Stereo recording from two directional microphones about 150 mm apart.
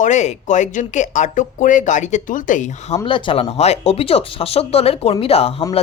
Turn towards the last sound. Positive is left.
turn(degrees=40)  # may be behind; listen again after turning